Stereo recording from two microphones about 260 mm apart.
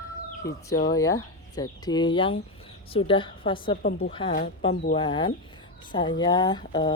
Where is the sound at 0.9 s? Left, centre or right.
Centre.